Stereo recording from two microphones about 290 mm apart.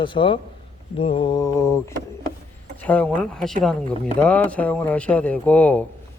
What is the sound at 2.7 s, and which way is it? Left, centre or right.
Speech, centre.